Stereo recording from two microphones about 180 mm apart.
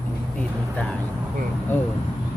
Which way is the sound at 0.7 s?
5° left (ahead or behind).